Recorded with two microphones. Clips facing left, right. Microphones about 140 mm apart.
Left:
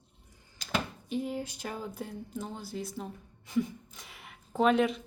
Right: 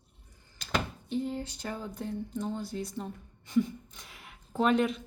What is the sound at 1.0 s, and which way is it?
Speech, 10° left (ahead or behind).